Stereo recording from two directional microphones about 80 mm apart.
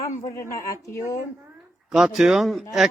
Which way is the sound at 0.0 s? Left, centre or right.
Left.